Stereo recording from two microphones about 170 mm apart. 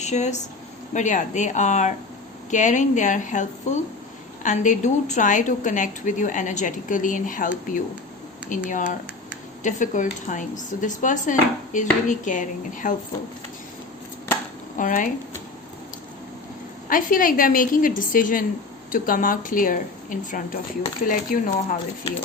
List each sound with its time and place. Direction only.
0.0 s a woman's voice: 40° left (ahead or behind)
14.8 s a woman's voice: 50° left (ahead or behind)
16.9 s a woman's voice: 55° left (ahead or behind)